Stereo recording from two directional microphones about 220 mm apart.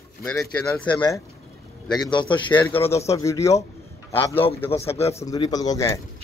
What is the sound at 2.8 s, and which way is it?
Speech, 30° left (ahead or behind).